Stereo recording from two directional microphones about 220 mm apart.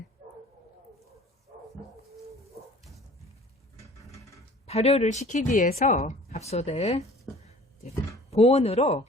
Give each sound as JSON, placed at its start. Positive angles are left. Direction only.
{"t": 0.2, "sound": "bow-wow", "side_deg": -35}
{"t": 4.6, "sound": "a woman's voice", "side_deg": 30}
{"t": 8.3, "sound": "speech", "side_deg": 25}